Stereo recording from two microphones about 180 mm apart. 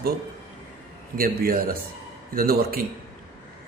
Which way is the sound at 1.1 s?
55° right (ahead or behind).